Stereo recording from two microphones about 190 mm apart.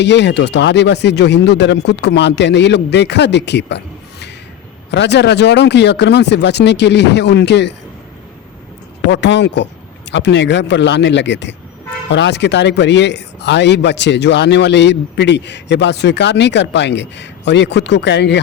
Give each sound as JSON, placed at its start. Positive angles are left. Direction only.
{"t": 0.0, "sound": "a man's voice", "side_deg": 65}
{"t": 4.9, "sound": "a man's voice", "side_deg": 65}
{"t": 9.0, "sound": "a man's voice", "side_deg": 65}